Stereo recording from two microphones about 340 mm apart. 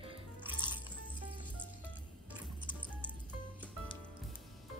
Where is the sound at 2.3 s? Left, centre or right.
Centre.